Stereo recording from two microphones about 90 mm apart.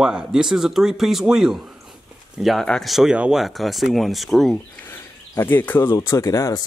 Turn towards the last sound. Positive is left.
turn(degrees=35)  # may be behind; listen again after turning